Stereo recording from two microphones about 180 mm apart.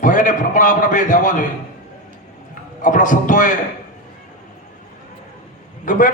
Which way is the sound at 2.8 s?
45° left (ahead or behind).